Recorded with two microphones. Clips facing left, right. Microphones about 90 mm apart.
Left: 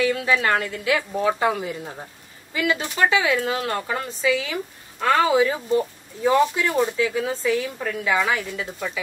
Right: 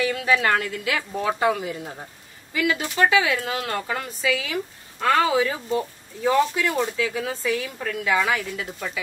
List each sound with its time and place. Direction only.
0.0 s a woman's voice: 30° left (ahead or behind)